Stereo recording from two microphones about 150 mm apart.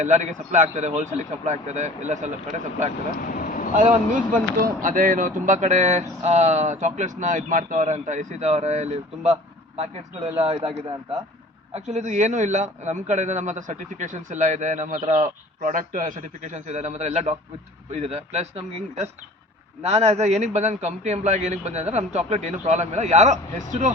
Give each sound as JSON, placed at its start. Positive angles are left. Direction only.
{"t": 0.0, "sound": "a man's voice", "side_deg": -55}
{"t": 3.2, "sound": "a sound", "side_deg": 65}
{"t": 3.8, "sound": "a man's voice", "side_deg": -60}